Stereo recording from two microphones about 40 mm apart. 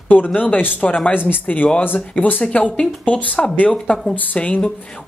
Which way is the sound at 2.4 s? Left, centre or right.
Left.